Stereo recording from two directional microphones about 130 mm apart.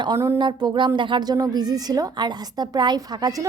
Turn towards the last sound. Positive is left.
turn(degrees=-30)  # may be behind; listen again after turning